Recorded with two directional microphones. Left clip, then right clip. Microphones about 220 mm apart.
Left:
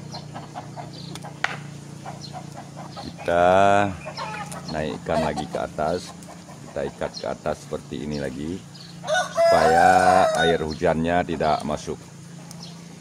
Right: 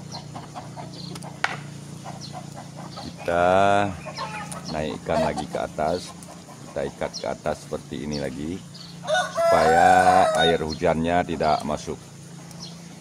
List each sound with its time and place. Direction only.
1.4 s a sound: 30° right (ahead or behind)
3.3 s speech: 20° left (ahead or behind)
4.1 s chicken: 10° right (ahead or behind)
4.7 s speech: 15° left (ahead or behind)